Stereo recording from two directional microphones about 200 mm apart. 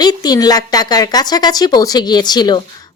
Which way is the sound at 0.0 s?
20° left (ahead or behind).